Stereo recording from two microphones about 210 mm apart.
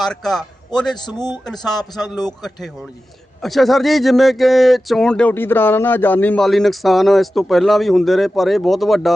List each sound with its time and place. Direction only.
0.0 s a man's voice: centre (ahead or behind)
0.9 s a man's voice: 20° left (ahead or behind)
2.4 s a man's voice: centre (ahead or behind)